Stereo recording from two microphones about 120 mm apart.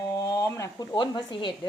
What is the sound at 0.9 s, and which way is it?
Speech, 40° left (ahead or behind).